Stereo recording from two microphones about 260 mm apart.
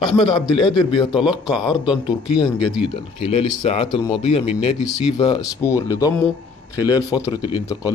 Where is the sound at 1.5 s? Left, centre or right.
Centre.